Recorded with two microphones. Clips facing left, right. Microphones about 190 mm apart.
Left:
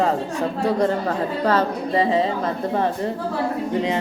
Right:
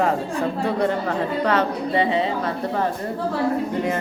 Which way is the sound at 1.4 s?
35° left (ahead or behind).